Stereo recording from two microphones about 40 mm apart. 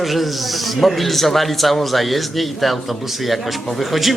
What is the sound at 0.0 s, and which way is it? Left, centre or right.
Speech, centre.